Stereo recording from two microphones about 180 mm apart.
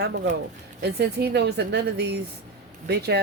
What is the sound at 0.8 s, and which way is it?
A woman's voice, 65° right (ahead or behind).